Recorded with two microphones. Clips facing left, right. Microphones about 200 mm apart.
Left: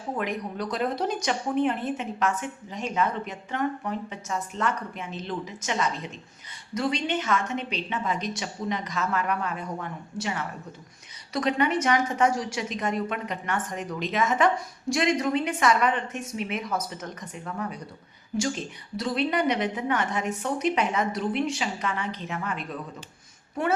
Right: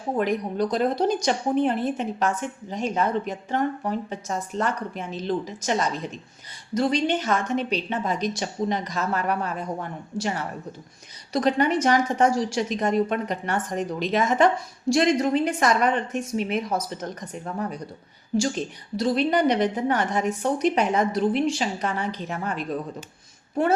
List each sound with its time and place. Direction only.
0.2 s speech: 35° right (ahead or behind)